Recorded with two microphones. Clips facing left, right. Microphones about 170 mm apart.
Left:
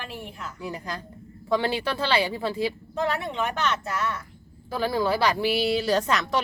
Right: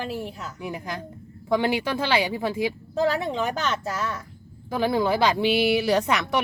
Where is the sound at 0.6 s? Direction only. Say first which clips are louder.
Right 1 dB; 15° right (ahead or behind).